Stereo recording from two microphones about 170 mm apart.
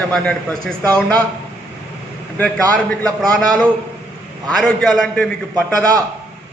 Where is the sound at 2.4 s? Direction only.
5° left (ahead or behind).